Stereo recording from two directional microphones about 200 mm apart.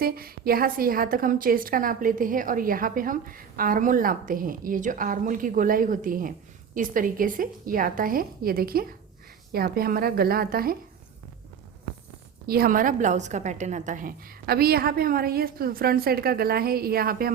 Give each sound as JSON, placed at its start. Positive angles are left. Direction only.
{"t": 0.0, "sound": "a woman's voice", "side_deg": -50}
{"t": 12.5, "sound": "a woman's voice", "side_deg": -50}